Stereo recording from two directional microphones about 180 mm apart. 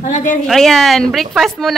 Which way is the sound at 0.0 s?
45° left (ahead or behind).